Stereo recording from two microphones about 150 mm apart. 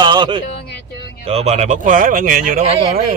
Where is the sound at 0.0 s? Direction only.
30° right (ahead or behind).